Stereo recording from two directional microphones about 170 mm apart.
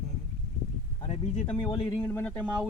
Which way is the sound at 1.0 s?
40° left (ahead or behind).